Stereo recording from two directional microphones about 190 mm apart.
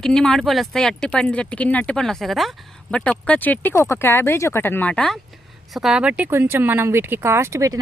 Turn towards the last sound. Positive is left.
turn(degrees=-15)  # may be behind; listen again after turning